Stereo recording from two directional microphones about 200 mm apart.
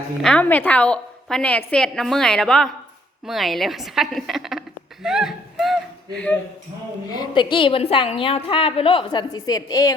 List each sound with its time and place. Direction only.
0.2 s a woman's voice: 5° left (ahead or behind)
5.0 s a sound: centre (ahead or behind)
7.1 s a woman's voice: 20° left (ahead or behind)